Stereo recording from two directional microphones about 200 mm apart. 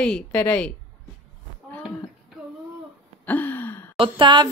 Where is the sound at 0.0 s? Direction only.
5° left (ahead or behind).